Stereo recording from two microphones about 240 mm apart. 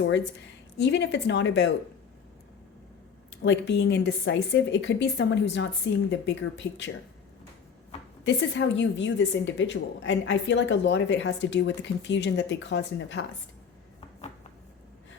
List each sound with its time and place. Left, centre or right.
0.8 s a woman's voice: left
3.2 s a woman's voice: left
8.2 s a woman's voice: left